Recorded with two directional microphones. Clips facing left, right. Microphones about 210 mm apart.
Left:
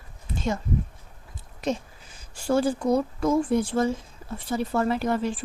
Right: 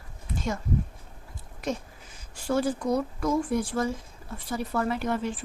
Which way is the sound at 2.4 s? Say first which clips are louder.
Left 3 dB; 30° left (ahead or behind).